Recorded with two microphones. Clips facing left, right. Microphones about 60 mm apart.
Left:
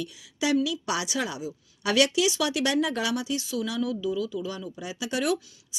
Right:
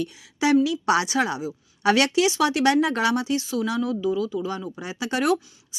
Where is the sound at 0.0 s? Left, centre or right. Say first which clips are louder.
Right 5 dB; right.